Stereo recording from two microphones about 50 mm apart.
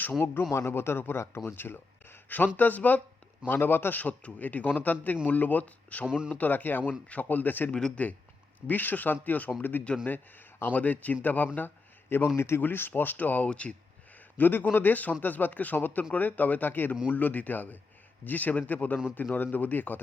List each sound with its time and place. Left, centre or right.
0.0 s a man's voice: left
0.5 s speech: left
2.6 s a man's voice: left
3.9 s a man's voice: left
6.1 s speech: centre
6.3 s a man's voice: left
7.7 s speech: centre
8.6 s a man's voice: left
11.5 s a sound: left
12.4 s speech: left
12.6 s a man's voice: left
14.3 s a man's voice: left